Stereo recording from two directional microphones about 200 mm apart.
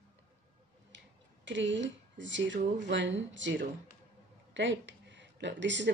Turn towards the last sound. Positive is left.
turn(degrees=-65)  # may be behind; listen again after turning